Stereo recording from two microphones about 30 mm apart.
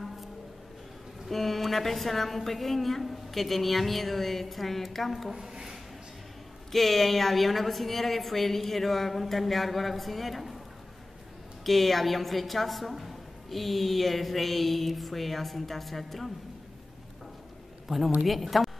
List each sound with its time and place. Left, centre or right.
1.3 s a woman's voice: centre
5.3 s speech: centre
6.7 s a woman's voice: centre
11.6 s a woman's voice: centre
17.8 s a man's voice: centre